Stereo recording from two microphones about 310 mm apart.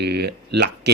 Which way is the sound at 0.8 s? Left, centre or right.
Right.